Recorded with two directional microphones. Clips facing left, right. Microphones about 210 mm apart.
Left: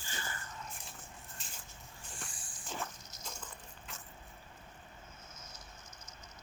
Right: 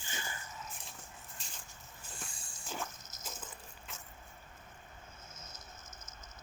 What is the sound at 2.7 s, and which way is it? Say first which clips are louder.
Cricket: even; centre (ahead or behind).